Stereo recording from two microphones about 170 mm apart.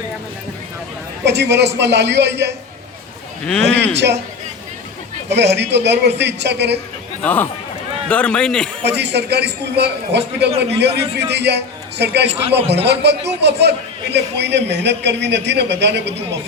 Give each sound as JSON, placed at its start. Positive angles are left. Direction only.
{"t": 1.2, "sound": "a man's voice", "side_deg": -85}
{"t": 3.4, "sound": "a man's voice", "side_deg": 5}
{"t": 3.9, "sound": "a man's voice", "side_deg": -90}
{"t": 5.3, "sound": "a man's voice", "side_deg": -90}
{"t": 7.2, "sound": "a man's voice", "side_deg": 10}
{"t": 8.8, "sound": "a man's voice", "side_deg": -80}